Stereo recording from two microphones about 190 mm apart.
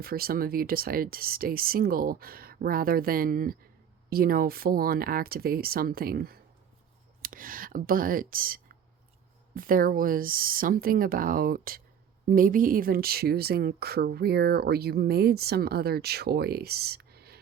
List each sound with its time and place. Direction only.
0.0 s speech: 50° right (ahead or behind)